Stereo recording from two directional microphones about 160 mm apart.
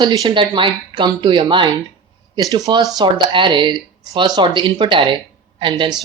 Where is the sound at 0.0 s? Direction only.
25° right (ahead or behind).